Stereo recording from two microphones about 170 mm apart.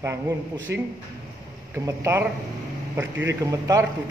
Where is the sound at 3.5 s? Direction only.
20° right (ahead or behind).